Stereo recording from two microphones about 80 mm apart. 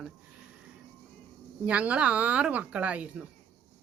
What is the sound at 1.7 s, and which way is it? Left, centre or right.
Speech, centre.